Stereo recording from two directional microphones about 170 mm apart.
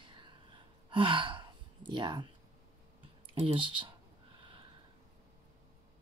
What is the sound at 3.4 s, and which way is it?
Speech, 35° right (ahead or behind).